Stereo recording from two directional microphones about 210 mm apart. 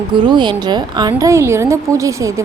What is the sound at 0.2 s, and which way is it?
A woman's voice, 20° right (ahead or behind).